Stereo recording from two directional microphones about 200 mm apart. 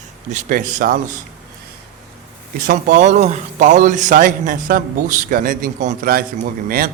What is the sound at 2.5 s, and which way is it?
A man's voice, 45° right (ahead or behind).